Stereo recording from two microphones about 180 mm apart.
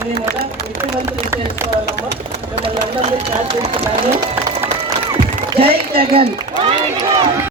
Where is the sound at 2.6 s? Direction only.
30° right (ahead or behind).